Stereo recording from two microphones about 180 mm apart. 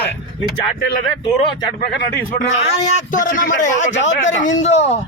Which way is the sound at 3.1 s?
45° left (ahead or behind).